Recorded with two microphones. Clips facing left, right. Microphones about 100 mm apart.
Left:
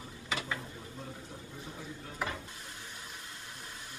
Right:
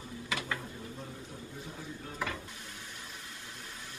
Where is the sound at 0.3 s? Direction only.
20° left (ahead or behind).